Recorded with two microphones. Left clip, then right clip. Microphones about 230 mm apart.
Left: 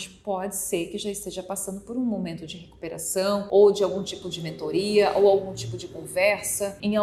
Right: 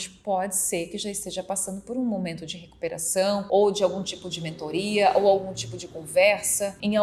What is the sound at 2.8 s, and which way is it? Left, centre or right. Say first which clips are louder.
A woman's voice: right 2 dB; right.